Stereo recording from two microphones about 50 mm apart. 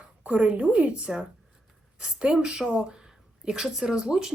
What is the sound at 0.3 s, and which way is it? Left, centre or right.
Speech, right.